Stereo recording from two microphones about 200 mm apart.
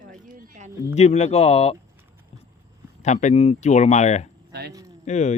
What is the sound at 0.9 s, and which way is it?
Speech, 35° left (ahead or behind).